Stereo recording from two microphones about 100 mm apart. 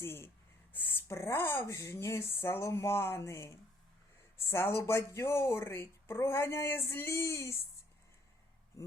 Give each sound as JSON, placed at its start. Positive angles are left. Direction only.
{"t": 0.0, "sound": "speech", "side_deg": 25}